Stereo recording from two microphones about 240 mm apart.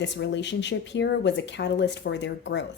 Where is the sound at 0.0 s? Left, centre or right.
Left.